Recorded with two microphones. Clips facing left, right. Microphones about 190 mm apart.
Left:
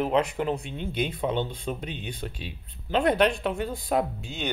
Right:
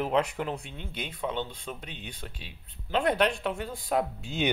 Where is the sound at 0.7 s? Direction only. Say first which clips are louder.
Left 9 dB; 25° left (ahead or behind).